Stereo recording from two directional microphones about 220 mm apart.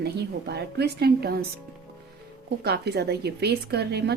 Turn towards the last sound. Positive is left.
turn(degrees=-50)  # may be behind; listen again after turning